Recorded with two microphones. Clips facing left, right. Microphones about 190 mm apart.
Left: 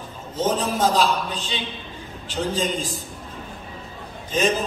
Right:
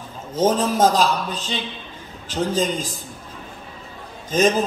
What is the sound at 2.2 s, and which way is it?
Speech, 45° right (ahead or behind).